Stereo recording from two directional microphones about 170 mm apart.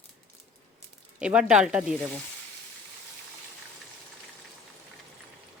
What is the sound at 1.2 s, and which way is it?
Speech, 5° right (ahead or behind).